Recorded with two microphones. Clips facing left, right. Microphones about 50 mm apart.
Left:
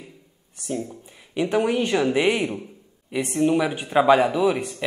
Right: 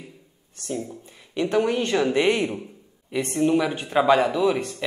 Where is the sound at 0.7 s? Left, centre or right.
Centre.